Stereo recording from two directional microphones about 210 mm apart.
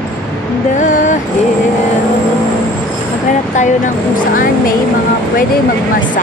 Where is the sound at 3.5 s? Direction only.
35° left (ahead or behind).